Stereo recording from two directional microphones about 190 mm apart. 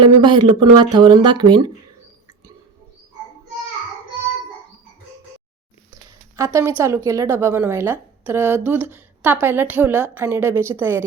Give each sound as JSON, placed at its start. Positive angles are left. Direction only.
{"t": 0.0, "sound": "speech", "side_deg": -25}
{"t": 6.3, "sound": "a woman's voice", "side_deg": -15}